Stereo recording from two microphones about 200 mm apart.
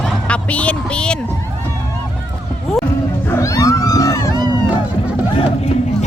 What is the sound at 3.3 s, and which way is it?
Music, 15° left (ahead or behind).